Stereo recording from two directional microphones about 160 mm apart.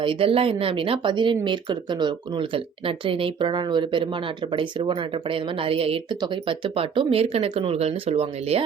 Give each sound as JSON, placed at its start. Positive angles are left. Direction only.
{"t": 0.0, "sound": "speech", "side_deg": -35}